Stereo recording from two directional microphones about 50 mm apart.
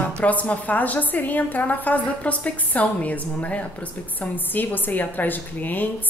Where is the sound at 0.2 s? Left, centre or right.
Left.